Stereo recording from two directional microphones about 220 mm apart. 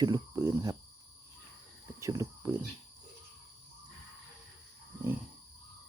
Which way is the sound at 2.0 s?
15° right (ahead or behind).